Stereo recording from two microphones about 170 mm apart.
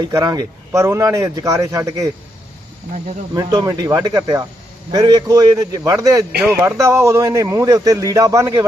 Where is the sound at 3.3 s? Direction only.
25° right (ahead or behind).